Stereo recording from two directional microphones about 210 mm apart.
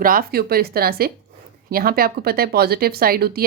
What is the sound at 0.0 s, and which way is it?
Speech, 45° right (ahead or behind).